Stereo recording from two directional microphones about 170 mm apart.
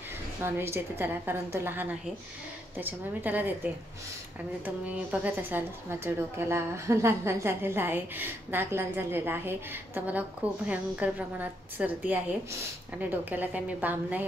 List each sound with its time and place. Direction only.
0.4 s a woman's voice: 15° right (ahead or behind)